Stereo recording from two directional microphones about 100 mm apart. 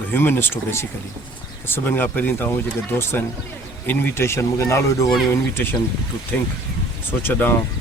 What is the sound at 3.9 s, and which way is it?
Speech, 25° left (ahead or behind).